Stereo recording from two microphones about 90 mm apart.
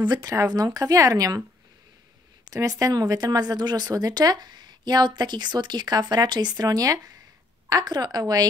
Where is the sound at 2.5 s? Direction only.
40° right (ahead or behind).